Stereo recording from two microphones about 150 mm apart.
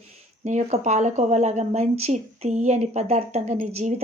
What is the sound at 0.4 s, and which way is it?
Speech, 50° right (ahead or behind).